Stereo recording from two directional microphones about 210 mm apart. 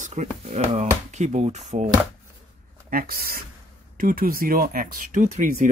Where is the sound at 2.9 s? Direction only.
45° right (ahead or behind).